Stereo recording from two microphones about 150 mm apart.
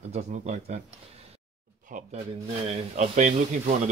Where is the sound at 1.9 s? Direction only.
60° right (ahead or behind).